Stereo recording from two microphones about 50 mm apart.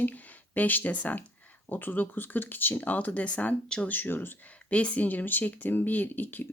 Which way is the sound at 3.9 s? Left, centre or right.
Left.